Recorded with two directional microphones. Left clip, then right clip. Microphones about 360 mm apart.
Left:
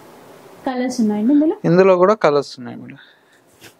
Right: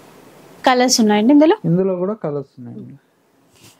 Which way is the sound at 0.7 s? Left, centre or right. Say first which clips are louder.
Right 8 dB; centre.